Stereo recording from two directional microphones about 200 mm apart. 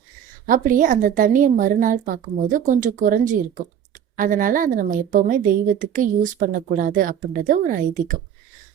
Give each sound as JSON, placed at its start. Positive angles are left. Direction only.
{"t": 0.4, "sound": "a woman's voice", "side_deg": -45}